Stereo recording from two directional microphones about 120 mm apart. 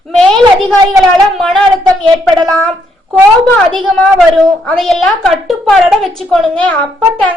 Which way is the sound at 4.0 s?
5° left (ahead or behind).